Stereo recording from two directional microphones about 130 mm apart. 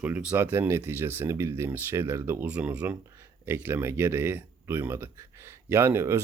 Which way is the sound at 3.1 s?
20° right (ahead or behind).